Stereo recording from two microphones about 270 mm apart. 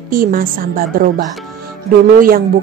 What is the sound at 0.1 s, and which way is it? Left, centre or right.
Speech, right.